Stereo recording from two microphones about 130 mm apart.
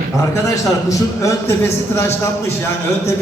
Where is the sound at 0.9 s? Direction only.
25° left (ahead or behind).